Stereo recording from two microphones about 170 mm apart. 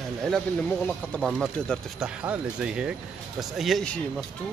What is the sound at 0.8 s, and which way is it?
Speech, 5° left (ahead or behind).